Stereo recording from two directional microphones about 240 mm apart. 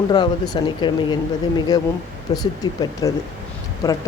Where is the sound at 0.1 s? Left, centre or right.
Centre.